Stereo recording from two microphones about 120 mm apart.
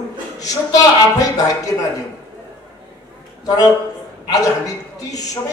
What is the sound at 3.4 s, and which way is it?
A man's voice, 35° left (ahead or behind).